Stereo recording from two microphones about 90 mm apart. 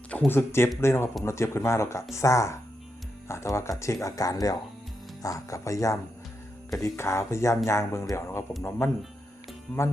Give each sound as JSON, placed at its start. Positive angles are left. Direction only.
{"t": 0.3, "sound": "speech", "side_deg": 25}
{"t": 9.7, "sound": "speech", "side_deg": 25}